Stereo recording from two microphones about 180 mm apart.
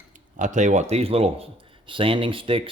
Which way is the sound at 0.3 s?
45° right (ahead or behind).